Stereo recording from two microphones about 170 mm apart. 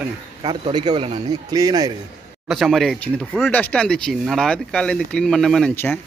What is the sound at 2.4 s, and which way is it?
Speech, centre (ahead or behind).